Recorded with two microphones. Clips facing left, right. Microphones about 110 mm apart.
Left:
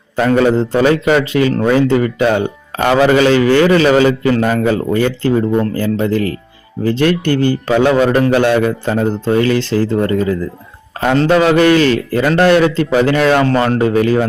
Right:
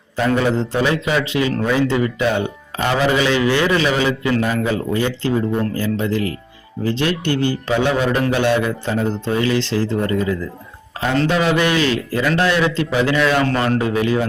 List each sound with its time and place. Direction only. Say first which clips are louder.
0.3 s a man's voice: left 8 dB; 55° left (ahead or behind)
11.3 s a man's voice: left 9 dB; 55° left (ahead or behind)